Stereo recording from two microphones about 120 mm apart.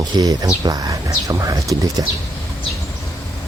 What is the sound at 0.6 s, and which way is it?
Speech, 35° right (ahead or behind).